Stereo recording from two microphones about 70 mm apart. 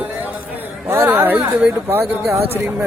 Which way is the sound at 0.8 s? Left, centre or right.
Right.